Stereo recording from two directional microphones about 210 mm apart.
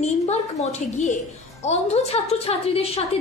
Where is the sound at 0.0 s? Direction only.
30° left (ahead or behind).